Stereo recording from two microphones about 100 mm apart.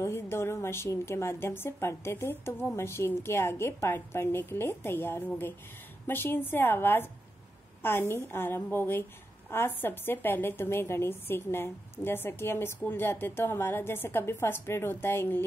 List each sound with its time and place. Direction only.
0.0 s a woman's voice: 25° left (ahead or behind)